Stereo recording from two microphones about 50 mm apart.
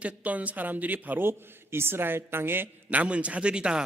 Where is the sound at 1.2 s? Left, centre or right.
Right.